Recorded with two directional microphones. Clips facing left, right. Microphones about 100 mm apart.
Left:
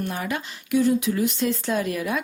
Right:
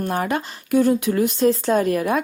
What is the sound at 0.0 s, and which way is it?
Speech, 45° right (ahead or behind).